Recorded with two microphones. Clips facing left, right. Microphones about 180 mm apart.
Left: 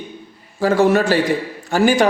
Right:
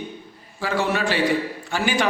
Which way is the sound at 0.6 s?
45° left (ahead or behind).